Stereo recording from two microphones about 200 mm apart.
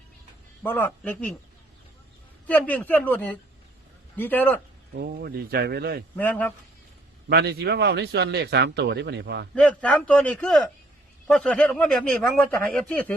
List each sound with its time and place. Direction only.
0.6 s a man's voice: 10° left (ahead or behind)
2.5 s a man's voice: 10° left (ahead or behind)
4.9 s speech: 50° right (ahead or behind)
6.1 s a man's voice: 10° left (ahead or behind)
7.3 s a man's voice: 50° right (ahead or behind)
9.6 s a man's voice: 5° left (ahead or behind)